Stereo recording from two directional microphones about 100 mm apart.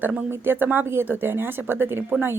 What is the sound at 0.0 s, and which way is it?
A woman's voice, 15° right (ahead or behind).